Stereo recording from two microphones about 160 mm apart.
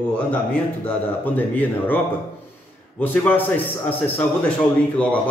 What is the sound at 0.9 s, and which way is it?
Speech, 10° left (ahead or behind).